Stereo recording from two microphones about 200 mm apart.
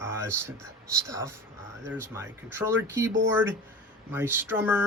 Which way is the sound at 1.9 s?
15° right (ahead or behind).